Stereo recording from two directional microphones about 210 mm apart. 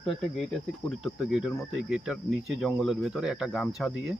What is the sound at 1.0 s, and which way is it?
A man's voice, centre (ahead or behind).